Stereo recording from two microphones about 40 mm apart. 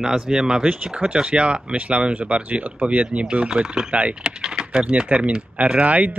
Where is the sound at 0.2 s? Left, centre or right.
Centre.